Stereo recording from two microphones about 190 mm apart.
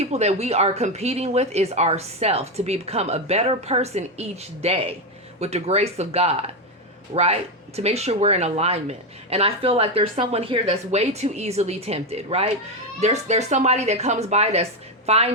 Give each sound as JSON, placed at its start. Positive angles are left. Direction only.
{"t": 0.0, "sound": "speech", "side_deg": -35}